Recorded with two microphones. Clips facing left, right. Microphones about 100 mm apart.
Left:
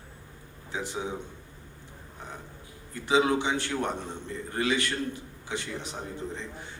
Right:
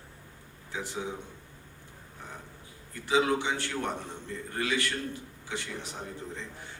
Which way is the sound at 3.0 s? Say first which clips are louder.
Left 2 dB; 20° left (ahead or behind).